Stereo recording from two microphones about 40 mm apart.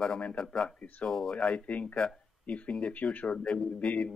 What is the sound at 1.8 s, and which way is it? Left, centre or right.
Speech, left.